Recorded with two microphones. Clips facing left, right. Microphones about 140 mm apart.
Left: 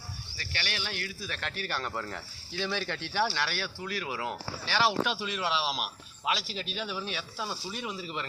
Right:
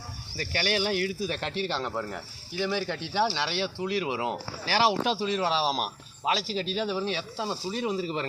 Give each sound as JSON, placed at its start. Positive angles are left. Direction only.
{"t": 0.3, "sound": "speech", "side_deg": -40}
{"t": 1.9, "sound": "speech", "side_deg": -10}
{"t": 4.6, "sound": "speech", "side_deg": -35}